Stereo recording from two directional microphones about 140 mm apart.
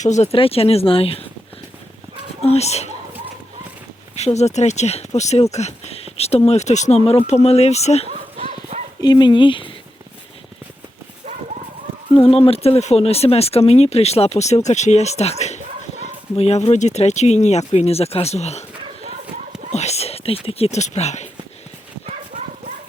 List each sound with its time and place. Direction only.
0.0 s speech: 55° left (ahead or behind)
2.4 s a sound: 50° left (ahead or behind)
4.1 s speech: 50° left (ahead or behind)
8.4 s clip-clop: 50° right (ahead or behind)
9.0 s speech: 30° left (ahead or behind)
12.1 s speech: 45° left (ahead or behind)
19.7 s speech: 50° left (ahead or behind)